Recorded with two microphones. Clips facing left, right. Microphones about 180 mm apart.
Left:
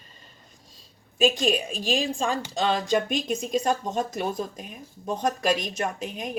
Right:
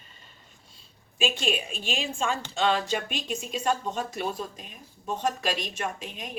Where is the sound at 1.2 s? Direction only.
40° left (ahead or behind).